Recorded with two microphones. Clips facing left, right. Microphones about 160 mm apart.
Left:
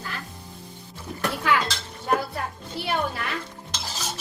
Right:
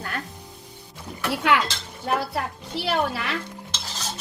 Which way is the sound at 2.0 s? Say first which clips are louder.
Even; 75° right (ahead or behind).